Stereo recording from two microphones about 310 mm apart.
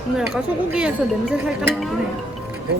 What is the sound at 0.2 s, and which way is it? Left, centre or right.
Speech, centre.